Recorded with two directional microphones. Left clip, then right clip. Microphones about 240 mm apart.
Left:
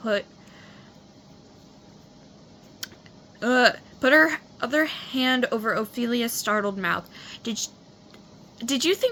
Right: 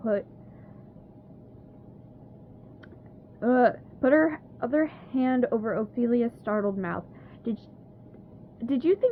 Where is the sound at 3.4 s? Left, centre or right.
Centre.